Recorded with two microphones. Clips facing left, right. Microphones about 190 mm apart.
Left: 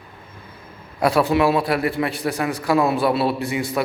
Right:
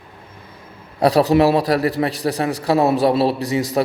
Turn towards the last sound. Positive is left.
turn(degrees=-35)  # may be behind; listen again after turning